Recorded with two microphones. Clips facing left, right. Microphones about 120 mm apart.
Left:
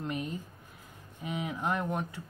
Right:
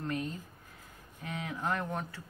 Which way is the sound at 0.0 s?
15° left (ahead or behind).